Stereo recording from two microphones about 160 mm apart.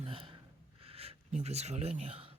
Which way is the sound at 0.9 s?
40° right (ahead or behind).